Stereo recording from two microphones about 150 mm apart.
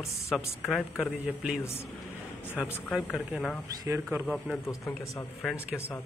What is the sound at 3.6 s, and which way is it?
Speech, 25° right (ahead or behind).